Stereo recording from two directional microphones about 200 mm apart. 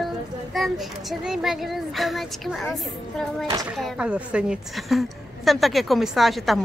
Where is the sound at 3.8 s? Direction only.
Centre (ahead or behind).